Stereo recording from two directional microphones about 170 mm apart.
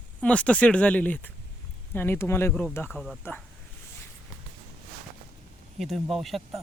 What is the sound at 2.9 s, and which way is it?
Speech, centre (ahead or behind).